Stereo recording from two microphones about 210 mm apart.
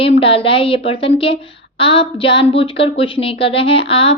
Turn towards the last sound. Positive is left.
turn(degrees=25)  # may be behind; listen again after turning